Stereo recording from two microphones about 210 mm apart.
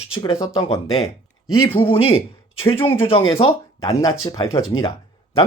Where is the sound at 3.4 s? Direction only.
25° left (ahead or behind).